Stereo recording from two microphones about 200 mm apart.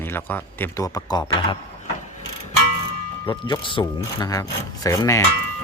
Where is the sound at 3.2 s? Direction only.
20° left (ahead or behind).